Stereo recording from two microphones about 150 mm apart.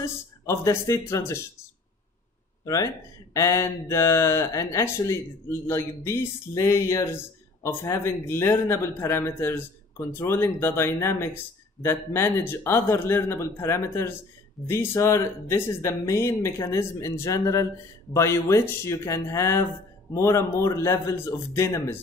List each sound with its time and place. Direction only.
0.0 s speech: 20° left (ahead or behind)
2.6 s speech: 25° left (ahead or behind)